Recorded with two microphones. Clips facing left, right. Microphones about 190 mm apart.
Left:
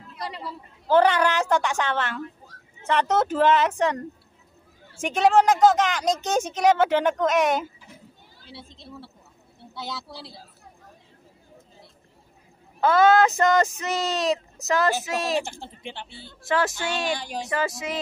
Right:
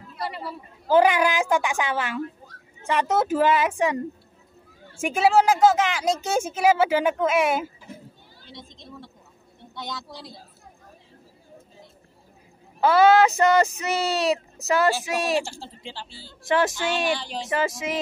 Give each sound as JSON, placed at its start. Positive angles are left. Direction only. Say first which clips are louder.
{"t": 0.5, "sound": "speech", "louder": "even", "side_deg": -10}
{"t": 5.0, "sound": "speech", "louder": "even", "side_deg": -5}
{"t": 9.8, "sound": "a woman's voice", "louder": "even", "side_deg": 5}
{"t": 12.8, "sound": "speech", "louder": "right 1 dB", "side_deg": -5}
{"t": 15.3, "sound": "speech", "louder": "right 1 dB", "side_deg": 20}
{"t": 16.4, "sound": "speech", "louder": "right 2 dB", "side_deg": -15}
{"t": 17.1, "sound": "speech", "louder": "right 1 dB", "side_deg": 15}
{"t": 17.5, "sound": "music", "louder": "right 2 dB", "side_deg": -15}